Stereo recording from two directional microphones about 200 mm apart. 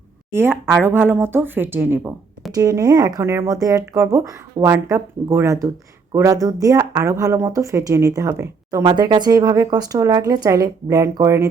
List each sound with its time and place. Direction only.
0.3 s speech: 10° right (ahead or behind)